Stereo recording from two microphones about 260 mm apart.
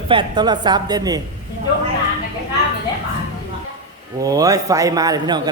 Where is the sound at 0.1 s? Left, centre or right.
Centre.